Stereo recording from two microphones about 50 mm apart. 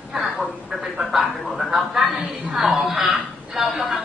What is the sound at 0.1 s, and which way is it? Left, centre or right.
A woman's voice, centre.